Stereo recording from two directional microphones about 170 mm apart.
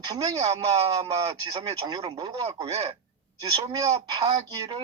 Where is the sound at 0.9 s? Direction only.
20° right (ahead or behind).